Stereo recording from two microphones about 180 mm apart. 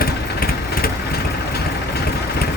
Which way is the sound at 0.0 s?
55° left (ahead or behind).